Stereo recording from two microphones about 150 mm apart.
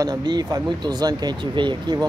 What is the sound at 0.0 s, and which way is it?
Speech, 25° right (ahead or behind).